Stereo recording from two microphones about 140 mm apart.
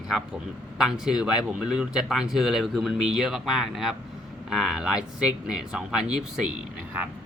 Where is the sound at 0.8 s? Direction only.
5° right (ahead or behind).